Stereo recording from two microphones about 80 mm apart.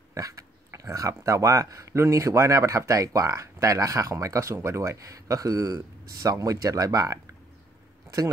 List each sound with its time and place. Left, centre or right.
0.1 s speech: right